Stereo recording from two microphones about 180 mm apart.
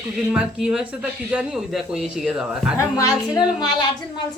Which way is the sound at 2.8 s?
20° left (ahead or behind).